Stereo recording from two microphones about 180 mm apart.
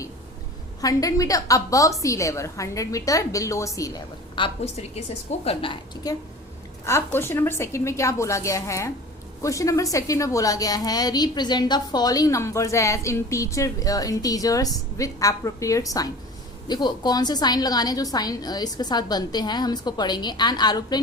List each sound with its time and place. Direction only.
0.8 s a woman's voice: 20° left (ahead or behind)